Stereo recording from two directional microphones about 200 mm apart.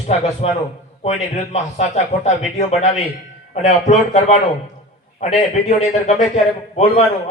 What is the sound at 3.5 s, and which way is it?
Speech, 35° left (ahead or behind).